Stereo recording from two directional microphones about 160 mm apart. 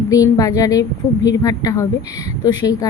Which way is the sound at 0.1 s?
20° left (ahead or behind).